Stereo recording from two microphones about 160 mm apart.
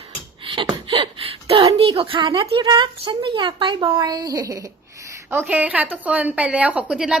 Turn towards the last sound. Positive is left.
turn(degrees=-5)  # may be behind; listen again after turning